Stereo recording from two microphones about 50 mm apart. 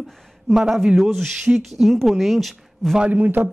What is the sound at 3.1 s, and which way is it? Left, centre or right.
Speech, right.